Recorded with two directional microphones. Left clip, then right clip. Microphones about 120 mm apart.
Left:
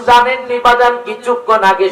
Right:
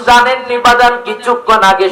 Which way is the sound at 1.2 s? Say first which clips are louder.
Right 2 dB; 30° right (ahead or behind).